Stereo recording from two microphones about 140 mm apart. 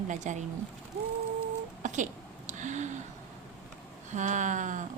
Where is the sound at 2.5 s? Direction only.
60° right (ahead or behind).